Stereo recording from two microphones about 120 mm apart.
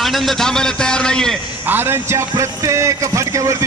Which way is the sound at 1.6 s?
20° right (ahead or behind).